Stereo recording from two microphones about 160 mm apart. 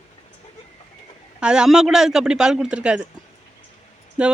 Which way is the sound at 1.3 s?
5° right (ahead or behind).